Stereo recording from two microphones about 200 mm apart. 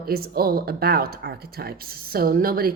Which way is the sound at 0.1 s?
50° right (ahead or behind).